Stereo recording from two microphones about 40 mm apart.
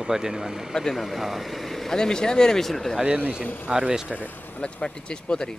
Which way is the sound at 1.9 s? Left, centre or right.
Centre.